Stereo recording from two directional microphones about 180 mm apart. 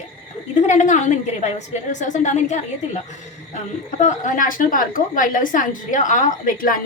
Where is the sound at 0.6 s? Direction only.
40° left (ahead or behind).